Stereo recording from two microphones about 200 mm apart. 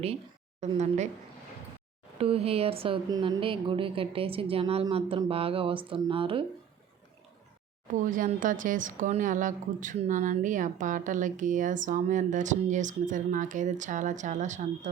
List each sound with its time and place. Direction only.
0.6 s a woman's voice: 35° right (ahead or behind)
2.1 s a woman's voice: 30° right (ahead or behind)
8.0 s a woman's voice: 40° right (ahead or behind)